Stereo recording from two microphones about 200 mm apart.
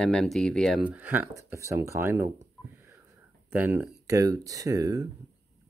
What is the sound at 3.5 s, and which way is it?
Speech, 10° right (ahead or behind).